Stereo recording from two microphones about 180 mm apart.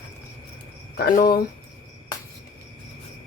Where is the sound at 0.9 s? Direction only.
55° left (ahead or behind).